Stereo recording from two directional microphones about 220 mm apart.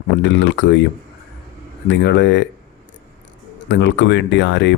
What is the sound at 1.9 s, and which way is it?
Speech, 55° left (ahead or behind).